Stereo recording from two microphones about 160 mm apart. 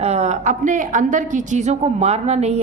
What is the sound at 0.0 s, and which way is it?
A woman's voice, 45° right (ahead or behind).